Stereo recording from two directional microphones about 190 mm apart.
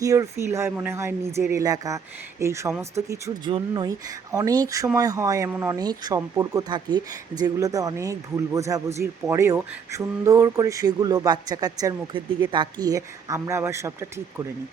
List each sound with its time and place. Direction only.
0.0 s speech: 15° right (ahead or behind)